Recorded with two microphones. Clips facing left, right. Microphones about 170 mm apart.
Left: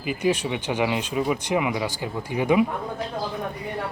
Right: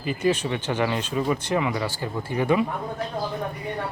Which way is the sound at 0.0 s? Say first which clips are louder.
Even; 10° left (ahead or behind).